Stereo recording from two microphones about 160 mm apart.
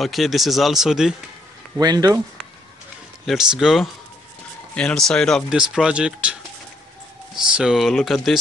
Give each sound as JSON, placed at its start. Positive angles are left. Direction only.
{"t": 0.0, "sound": "speech", "side_deg": 0}
{"t": 1.8, "sound": "speech", "side_deg": -25}
{"t": 3.3, "sound": "speech", "side_deg": 0}
{"t": 7.3, "sound": "speech", "side_deg": -5}